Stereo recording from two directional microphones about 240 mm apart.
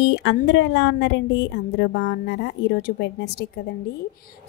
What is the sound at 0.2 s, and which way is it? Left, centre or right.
A woman's voice, left.